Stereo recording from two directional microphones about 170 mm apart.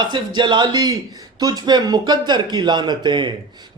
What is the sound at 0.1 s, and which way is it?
A man's voice, 25° right (ahead or behind).